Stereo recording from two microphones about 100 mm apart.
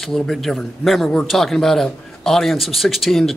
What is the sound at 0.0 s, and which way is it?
A man's voice, centre (ahead or behind).